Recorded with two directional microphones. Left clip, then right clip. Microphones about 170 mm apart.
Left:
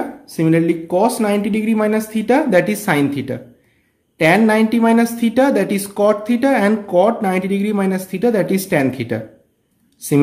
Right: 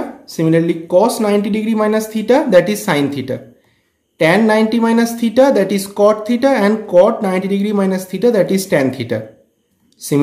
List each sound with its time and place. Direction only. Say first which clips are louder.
0.2 s a woman's voice: right 2 dB; 25° left (ahead or behind)